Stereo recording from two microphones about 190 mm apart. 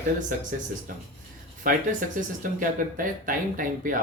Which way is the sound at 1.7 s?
45° right (ahead or behind).